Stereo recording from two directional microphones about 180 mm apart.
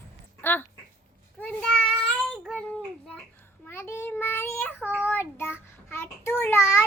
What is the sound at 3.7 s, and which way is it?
Child singing, 15° left (ahead or behind).